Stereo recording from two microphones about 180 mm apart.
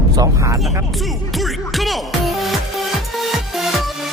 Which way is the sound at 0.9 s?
Centre (ahead or behind).